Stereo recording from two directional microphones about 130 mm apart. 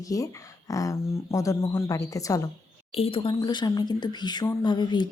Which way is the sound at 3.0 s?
45° left (ahead or behind).